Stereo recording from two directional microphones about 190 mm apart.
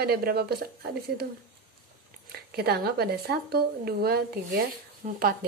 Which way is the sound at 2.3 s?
55° right (ahead or behind).